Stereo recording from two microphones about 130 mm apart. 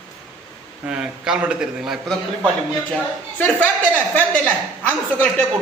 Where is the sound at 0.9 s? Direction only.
5° right (ahead or behind).